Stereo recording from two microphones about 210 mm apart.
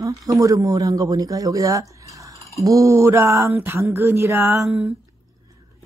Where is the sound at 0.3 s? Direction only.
15° right (ahead or behind).